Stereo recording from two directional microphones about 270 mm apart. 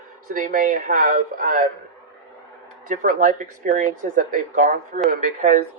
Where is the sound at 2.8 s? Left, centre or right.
Right.